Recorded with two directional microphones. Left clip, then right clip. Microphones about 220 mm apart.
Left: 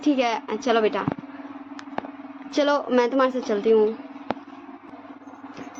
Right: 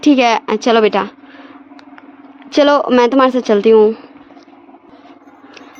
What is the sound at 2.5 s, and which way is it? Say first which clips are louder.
A man's voice: right 10 dB; 45° right (ahead or behind).